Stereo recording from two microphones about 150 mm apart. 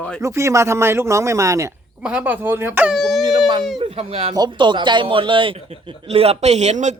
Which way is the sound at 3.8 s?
40° right (ahead or behind).